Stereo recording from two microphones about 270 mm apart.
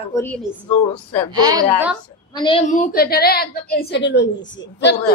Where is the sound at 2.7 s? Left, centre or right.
Left.